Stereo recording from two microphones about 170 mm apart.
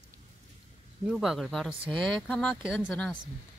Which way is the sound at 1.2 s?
Centre (ahead or behind).